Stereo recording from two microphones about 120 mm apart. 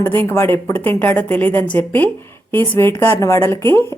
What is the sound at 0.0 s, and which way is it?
A woman's voice, 20° left (ahead or behind).